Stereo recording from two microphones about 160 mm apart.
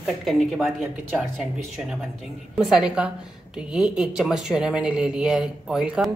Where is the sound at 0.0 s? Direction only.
Centre (ahead or behind).